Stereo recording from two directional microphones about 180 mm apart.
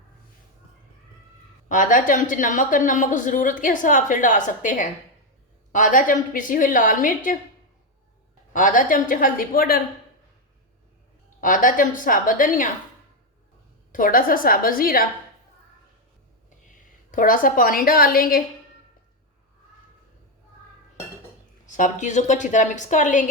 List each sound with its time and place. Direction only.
1.6 s a woman's voice: 45° left (ahead or behind)
8.5 s a woman's voice: 45° left (ahead or behind)
11.3 s a woman's voice: 50° left (ahead or behind)
13.9 s a woman's voice: 50° left (ahead or behind)
17.1 s a woman's voice: 50° left (ahead or behind)
21.7 s a woman's voice: 45° left (ahead or behind)